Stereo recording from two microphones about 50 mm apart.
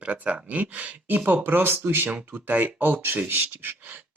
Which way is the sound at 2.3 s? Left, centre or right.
Right.